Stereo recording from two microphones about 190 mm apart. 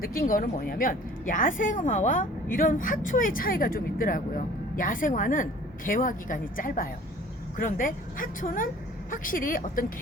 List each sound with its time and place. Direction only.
0.0 s a woman's voice: 50° left (ahead or behind)